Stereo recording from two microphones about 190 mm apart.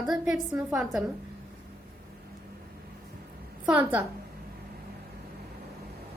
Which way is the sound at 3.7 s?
5° right (ahead or behind).